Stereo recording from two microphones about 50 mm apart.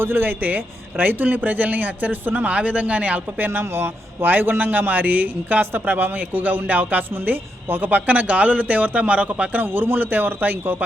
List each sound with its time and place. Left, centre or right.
0.0 s speech: right
3.6 s speech: right